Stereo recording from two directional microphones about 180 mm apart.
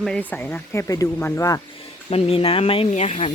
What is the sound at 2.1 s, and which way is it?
Speech, 35° left (ahead or behind).